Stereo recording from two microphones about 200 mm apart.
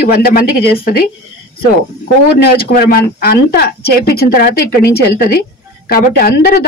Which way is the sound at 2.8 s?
45° left (ahead or behind).